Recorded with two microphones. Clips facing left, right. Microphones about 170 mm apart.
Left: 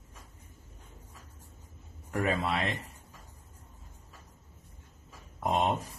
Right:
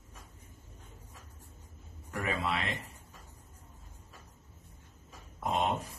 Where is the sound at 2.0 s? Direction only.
40° left (ahead or behind).